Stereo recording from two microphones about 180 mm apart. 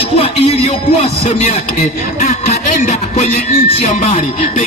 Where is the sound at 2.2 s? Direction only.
40° left (ahead or behind).